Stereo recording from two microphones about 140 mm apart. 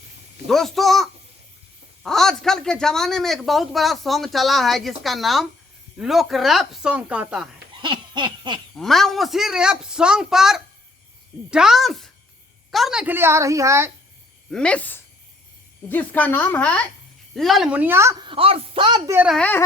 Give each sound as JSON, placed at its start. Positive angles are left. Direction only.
{"t": 0.4, "sound": "speech", "side_deg": 0}
{"t": 7.8, "sound": "baby laughter", "side_deg": -35}
{"t": 8.7, "sound": "a woman's voice", "side_deg": 0}
{"t": 14.5, "sound": "a woman's voice", "side_deg": 10}
{"t": 18.2, "sound": "speech", "side_deg": -40}
{"t": 19.3, "sound": "speech", "side_deg": 10}